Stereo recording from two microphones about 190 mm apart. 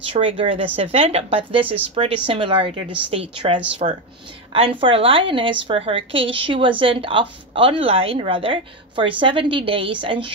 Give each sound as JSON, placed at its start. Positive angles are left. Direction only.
{"t": 0.0, "sound": "a woman's voice", "side_deg": -30}